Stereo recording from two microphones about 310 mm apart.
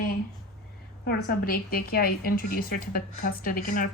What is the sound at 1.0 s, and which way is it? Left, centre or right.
A woman's voice, left.